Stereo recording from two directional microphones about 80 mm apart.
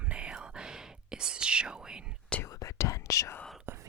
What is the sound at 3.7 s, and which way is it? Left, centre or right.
Whispering, right.